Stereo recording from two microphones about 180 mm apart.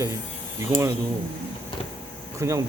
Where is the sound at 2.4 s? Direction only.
15° right (ahead or behind).